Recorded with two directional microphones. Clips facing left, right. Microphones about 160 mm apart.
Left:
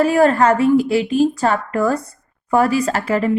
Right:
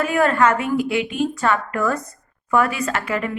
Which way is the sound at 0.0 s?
35° left (ahead or behind).